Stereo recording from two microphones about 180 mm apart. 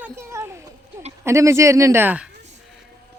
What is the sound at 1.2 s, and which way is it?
Speech, 15° right (ahead or behind).